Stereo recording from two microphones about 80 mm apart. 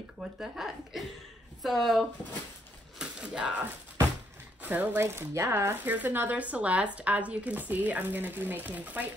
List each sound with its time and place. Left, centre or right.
0.2 s speech: centre
3.0 s a sound: centre
4.6 s speech: right